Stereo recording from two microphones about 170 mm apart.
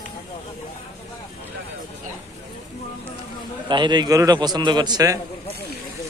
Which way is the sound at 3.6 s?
25° right (ahead or behind).